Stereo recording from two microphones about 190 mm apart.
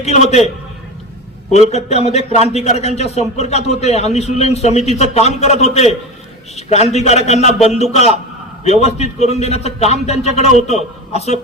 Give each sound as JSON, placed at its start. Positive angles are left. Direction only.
{"t": 0.0, "sound": "a man's voice", "side_deg": 35}